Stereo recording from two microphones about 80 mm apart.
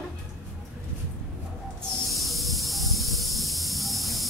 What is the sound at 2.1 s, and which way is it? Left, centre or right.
Train, centre.